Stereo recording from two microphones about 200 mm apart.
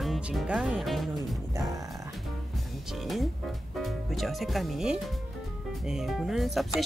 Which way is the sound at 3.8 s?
Centre (ahead or behind).